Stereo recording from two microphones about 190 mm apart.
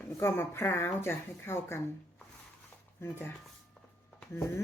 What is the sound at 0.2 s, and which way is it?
Speech, 15° left (ahead or behind).